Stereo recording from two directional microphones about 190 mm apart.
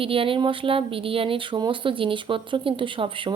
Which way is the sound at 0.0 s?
30° right (ahead or behind).